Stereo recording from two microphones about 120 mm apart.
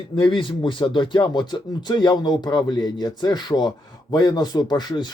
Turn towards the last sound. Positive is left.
turn(degrees=35)  # may be behind; listen again after turning